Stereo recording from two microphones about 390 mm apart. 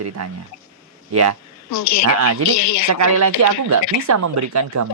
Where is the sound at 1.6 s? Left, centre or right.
Left.